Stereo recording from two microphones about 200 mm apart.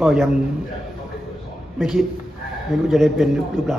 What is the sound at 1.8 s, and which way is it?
A man's voice, centre (ahead or behind).